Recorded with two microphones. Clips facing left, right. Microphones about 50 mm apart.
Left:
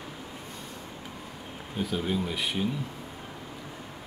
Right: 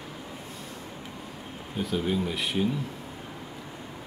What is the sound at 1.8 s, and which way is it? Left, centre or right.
Speech, centre.